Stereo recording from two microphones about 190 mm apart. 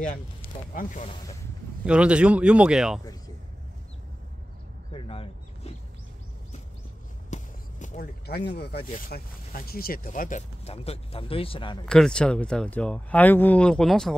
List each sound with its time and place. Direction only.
0.7 s speech: 40° left (ahead or behind)
1.9 s speech: 5° right (ahead or behind)
4.9 s a sound: 30° left (ahead or behind)
7.2 s a sound: 40° left (ahead or behind)
8.5 s speech: 60° left (ahead or behind); by 11.8 s 25° left (ahead or behind)
11.9 s speech: 5° left (ahead or behind)